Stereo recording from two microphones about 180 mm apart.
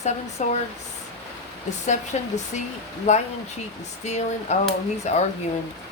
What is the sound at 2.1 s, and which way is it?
Speech, 40° left (ahead or behind).